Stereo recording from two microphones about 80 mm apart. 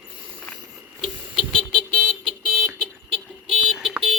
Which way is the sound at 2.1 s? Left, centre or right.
Centre.